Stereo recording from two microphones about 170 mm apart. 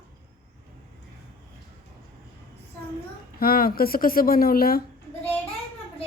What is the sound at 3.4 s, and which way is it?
Speech, 60° left (ahead or behind).